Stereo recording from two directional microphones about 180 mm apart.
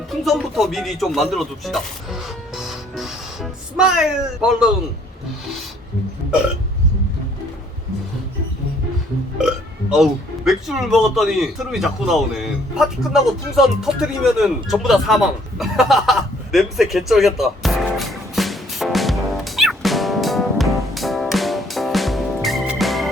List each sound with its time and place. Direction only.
0.2 s speech: centre (ahead or behind)
9.9 s a sound: centre (ahead or behind)
22.8 s music: centre (ahead or behind)